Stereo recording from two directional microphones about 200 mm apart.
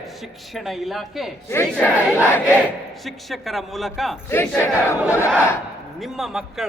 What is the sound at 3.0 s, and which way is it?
A man's voice, centre (ahead or behind).